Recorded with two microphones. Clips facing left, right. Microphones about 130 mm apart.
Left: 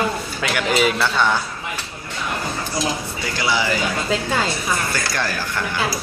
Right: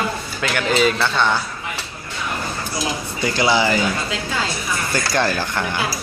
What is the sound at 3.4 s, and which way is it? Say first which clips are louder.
Speech: right 4 dB; 25° right (ahead or behind).